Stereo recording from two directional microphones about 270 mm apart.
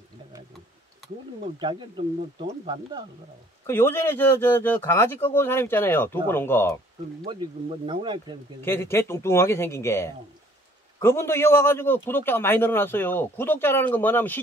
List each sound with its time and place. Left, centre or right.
1.6 s speech: centre
3.6 s a man's voice: centre
7.3 s speech: centre
8.5 s a man's voice: centre